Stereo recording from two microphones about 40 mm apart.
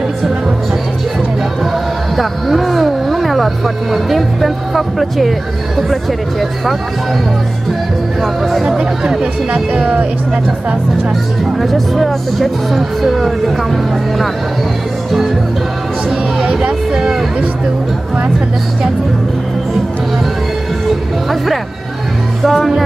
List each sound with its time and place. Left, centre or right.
2.1 s speech: centre
8.2 s speech: centre
8.6 s speech: centre
11.4 s speech: centre
15.0 s speech: centre
16.9 s speech: centre
22.4 s speech: centre